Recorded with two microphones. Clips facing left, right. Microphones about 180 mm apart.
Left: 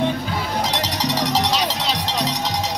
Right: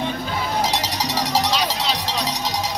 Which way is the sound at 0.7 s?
5° right (ahead or behind).